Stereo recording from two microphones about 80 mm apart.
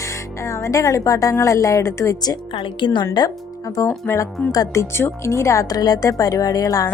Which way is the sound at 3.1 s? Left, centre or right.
Left.